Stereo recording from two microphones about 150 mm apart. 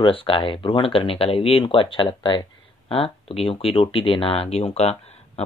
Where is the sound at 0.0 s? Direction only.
35° left (ahead or behind).